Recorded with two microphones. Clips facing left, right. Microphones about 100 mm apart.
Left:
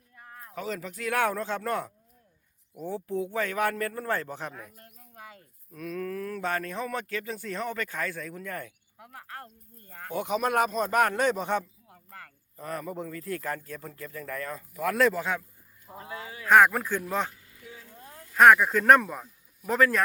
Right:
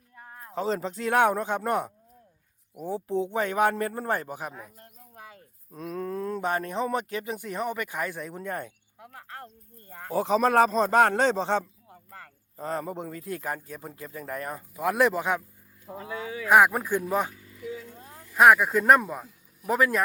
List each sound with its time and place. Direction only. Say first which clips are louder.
0.2 s a man's voice: right 6 dB; 25° right (ahead or behind)
16.5 s speech: even; 10° right (ahead or behind)